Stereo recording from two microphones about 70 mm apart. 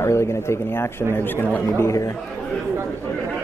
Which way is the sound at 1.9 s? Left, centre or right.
Left.